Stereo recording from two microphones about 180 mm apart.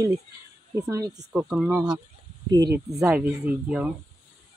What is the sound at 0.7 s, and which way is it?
Speech, 15° right (ahead or behind).